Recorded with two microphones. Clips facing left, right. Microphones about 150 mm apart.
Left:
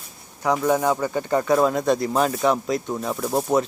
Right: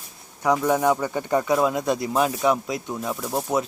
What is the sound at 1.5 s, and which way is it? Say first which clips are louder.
Speech: left 3 dB; 5° right (ahead or behind).